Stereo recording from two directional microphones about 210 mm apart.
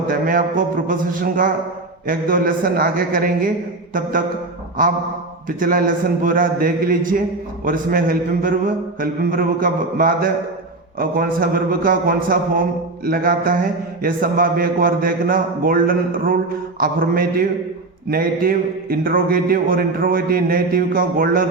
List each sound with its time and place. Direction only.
0.1 s a man's voice: 40° right (ahead or behind)
5.5 s a man's voice: 40° right (ahead or behind)